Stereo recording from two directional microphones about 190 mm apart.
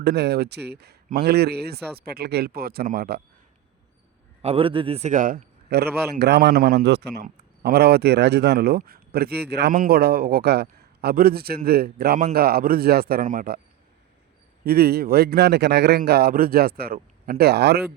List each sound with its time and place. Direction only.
0.0 s a man's voice: 60° right (ahead or behind)
4.4 s a man's voice: 30° right (ahead or behind); by 13.6 s 45° right (ahead or behind)
14.6 s a man's voice: 55° right (ahead or behind)